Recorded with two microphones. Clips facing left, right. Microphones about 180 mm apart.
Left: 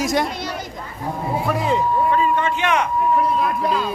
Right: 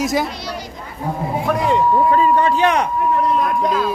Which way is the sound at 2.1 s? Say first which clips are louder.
Right 4 dB; 40° right (ahead or behind).